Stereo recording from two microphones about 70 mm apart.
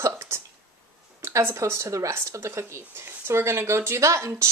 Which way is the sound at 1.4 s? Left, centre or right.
Right.